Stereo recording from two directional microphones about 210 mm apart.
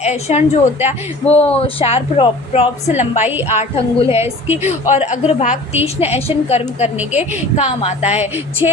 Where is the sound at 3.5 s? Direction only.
30° left (ahead or behind).